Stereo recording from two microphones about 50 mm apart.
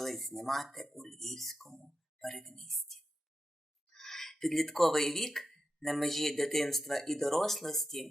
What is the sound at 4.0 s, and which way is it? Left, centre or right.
Speech, centre.